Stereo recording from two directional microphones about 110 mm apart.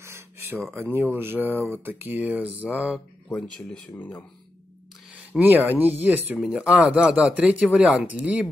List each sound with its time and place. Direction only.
0.0 s a sound: 25° right (ahead or behind)
0.8 s speech: 20° right (ahead or behind)
3.3 s speech: 5° left (ahead or behind)
3.9 s speech: 15° left (ahead or behind)
5.3 s speech: centre (ahead or behind)
5.7 s speech: 15° right (ahead or behind)